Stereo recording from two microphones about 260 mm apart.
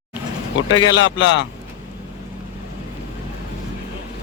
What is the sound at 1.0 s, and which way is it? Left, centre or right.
Speech, left.